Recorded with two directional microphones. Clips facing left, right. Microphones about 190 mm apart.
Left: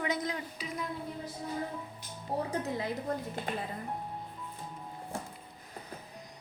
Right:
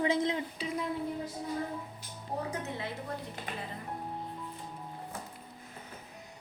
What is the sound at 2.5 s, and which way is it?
Speech, 35° left (ahead or behind).